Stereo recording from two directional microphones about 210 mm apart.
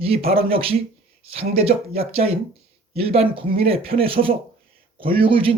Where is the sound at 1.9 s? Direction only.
30° right (ahead or behind).